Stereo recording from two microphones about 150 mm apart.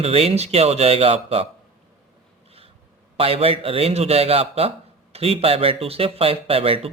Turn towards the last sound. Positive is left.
turn(degrees=-40)  # may be behind; listen again after turning